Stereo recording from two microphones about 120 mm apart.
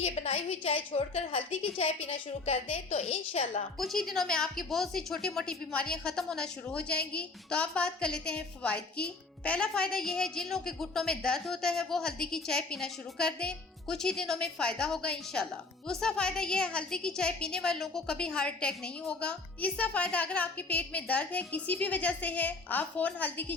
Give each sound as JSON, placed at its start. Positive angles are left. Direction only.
{"t": 0.0, "sound": "a woman's voice", "side_deg": 55}
{"t": 3.8, "sound": "a woman's voice", "side_deg": 0}